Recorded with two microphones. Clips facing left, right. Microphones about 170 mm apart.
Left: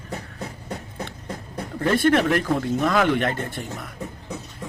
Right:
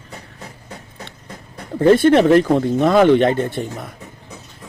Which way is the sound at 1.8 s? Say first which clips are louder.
Right 8 dB; 30° right (ahead or behind).